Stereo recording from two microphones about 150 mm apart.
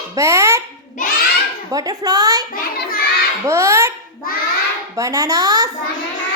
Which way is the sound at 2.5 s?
80° left.